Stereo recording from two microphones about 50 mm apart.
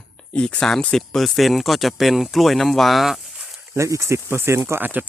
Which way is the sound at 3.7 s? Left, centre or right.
Right.